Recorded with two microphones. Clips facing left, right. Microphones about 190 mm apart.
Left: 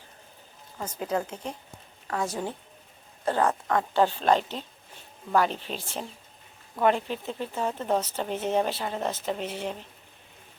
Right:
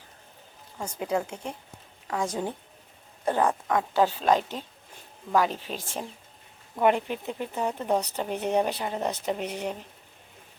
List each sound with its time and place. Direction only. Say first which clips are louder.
0.8 s speech: right 1 dB; 10° right (ahead or behind)
6.7 s speech: right 1 dB; 15° right (ahead or behind)